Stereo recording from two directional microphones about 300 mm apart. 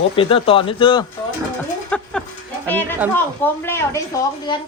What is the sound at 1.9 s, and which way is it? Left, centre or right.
Speech, centre.